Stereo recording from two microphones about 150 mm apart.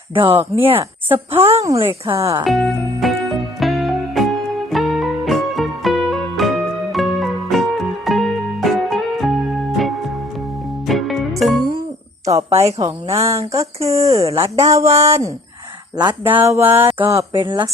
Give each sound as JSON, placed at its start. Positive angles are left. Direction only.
{"t": 0.1, "sound": "a woman's voice", "side_deg": -35}
{"t": 1.1, "sound": "mantra", "side_deg": -15}
{"t": 1.6, "sound": "speech", "side_deg": -20}
{"t": 2.4, "sound": "speech", "side_deg": 0}
{"t": 3.6, "sound": "music", "side_deg": 0}
{"t": 12.8, "sound": "speech", "side_deg": -20}
{"t": 14.1, "sound": "speech", "side_deg": -45}
{"t": 14.4, "sound": "speech", "side_deg": -20}
{"t": 14.8, "sound": "speech", "side_deg": -45}
{"t": 16.0, "sound": "speech", "side_deg": -30}
{"t": 16.3, "sound": "mantra", "side_deg": -15}
{"t": 17.4, "sound": "a woman's voice", "side_deg": -30}